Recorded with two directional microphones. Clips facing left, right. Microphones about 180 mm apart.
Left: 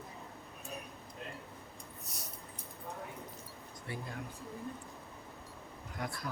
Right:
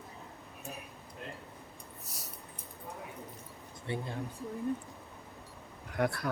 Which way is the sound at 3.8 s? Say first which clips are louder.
Right 6 dB; 25° right (ahead or behind).